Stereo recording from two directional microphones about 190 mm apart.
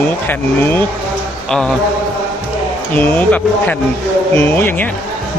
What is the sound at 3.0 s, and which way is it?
Speech, 10° left (ahead or behind).